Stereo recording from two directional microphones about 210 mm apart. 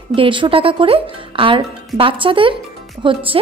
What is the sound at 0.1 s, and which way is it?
Speech, 25° right (ahead or behind).